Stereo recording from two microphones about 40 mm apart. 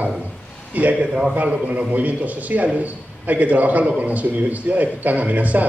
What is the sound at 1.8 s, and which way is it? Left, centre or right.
Speech, right.